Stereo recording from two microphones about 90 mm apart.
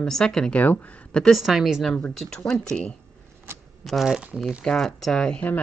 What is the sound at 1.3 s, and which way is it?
Speech, 5° right (ahead or behind).